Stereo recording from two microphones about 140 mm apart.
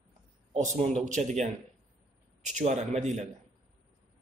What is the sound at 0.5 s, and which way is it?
A man's voice, 60° right (ahead or behind).